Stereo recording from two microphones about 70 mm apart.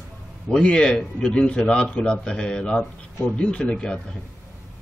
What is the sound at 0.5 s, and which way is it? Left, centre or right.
A man's voice, centre.